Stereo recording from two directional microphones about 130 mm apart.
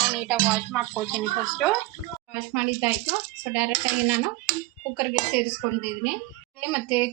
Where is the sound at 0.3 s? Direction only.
5° right (ahead or behind).